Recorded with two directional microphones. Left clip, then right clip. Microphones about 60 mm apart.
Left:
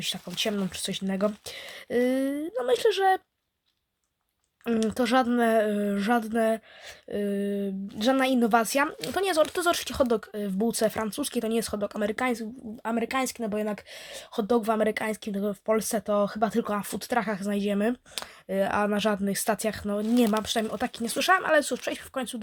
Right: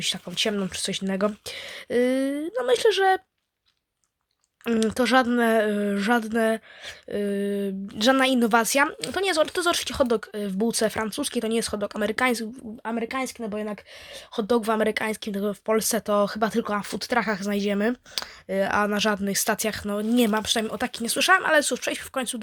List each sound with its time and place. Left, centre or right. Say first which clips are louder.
0.3 s speech: right 2 dB; right
4.6 s speech: right 3 dB; right
8.1 s speech: right 2 dB; right
9.0 s speech: right 1 dB; centre; by 12.1 s right
12.8 s speech: even; centre
13.1 s speech: left 1 dB; left
14.4 s speech: right 2 dB; right
16.5 s speech: right 2 dB; right
16.8 s speech: right 3 dB; right
18.1 s speech: right 3 dB; centre
18.9 s speech: right 2 dB; centre
20.3 s speech: right 3 dB; centre
20.7 s speech: right 2 dB; right